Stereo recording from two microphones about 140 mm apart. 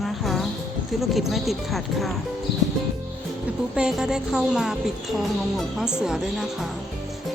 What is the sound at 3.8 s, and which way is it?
A woman's voice, 5° right (ahead or behind).